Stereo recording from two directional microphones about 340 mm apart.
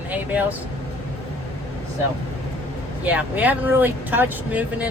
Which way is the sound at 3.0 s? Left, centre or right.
Centre.